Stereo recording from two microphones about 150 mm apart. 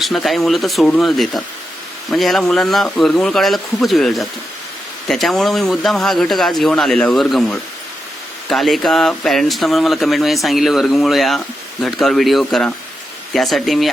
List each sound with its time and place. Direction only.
0.0 s speech: centre (ahead or behind)